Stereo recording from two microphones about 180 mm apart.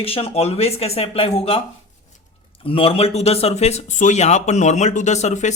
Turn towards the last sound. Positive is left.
turn(degrees=40)  # may be behind; listen again after turning